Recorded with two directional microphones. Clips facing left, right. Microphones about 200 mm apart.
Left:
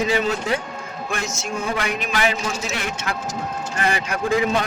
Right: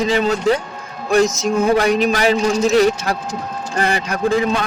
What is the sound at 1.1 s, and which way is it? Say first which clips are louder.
A man's voice: right 13 dB; 40° right (ahead or behind).